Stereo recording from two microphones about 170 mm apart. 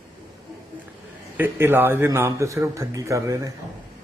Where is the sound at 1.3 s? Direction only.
10° right (ahead or behind).